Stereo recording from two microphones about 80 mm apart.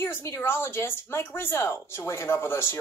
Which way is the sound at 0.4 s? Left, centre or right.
Left.